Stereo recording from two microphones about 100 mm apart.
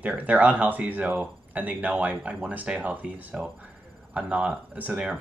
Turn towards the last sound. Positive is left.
turn(degrees=-10)  # may be behind; listen again after turning